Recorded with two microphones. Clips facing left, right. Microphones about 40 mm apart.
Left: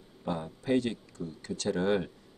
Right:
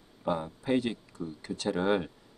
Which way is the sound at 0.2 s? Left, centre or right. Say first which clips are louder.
Right 3 dB; centre.